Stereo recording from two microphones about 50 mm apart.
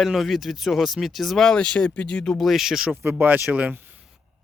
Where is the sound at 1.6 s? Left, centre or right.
Centre.